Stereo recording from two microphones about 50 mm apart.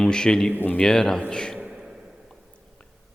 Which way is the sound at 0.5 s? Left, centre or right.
Left.